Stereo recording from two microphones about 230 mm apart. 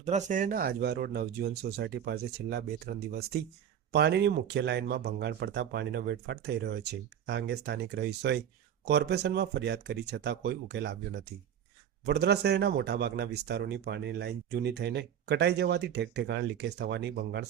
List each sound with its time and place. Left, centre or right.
0.0 s speech: right
12.0 s speech: right